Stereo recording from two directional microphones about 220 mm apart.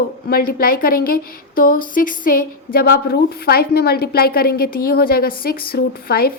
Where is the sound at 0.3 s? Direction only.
40° left (ahead or behind).